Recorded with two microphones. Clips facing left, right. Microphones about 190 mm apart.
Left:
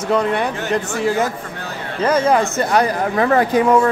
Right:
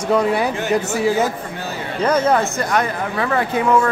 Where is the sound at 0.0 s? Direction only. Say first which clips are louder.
Right 1 dB; 5° right (ahead or behind).